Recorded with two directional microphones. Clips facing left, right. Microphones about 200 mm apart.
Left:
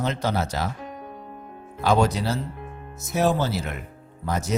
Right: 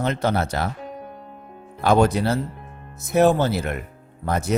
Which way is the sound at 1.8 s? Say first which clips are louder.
Right 3 dB; 55° right (ahead or behind).